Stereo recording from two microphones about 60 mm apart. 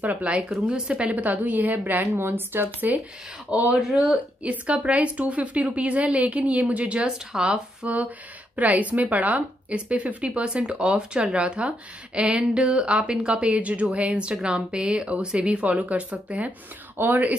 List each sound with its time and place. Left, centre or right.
0.0 s a woman's voice: right
0.4 s a woman's voice: centre; by 3.0 s right
3.4 s a woman's voice: right
3.7 s speech: centre
4.4 s a woman's voice: right
7.0 s a woman's voice: centre; by 17.4 s right